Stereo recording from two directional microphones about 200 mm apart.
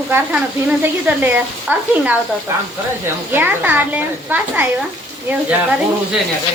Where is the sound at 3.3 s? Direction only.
10° right (ahead or behind).